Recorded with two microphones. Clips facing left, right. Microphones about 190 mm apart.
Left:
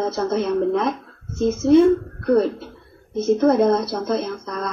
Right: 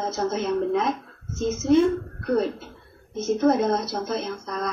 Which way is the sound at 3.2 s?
55° left (ahead or behind).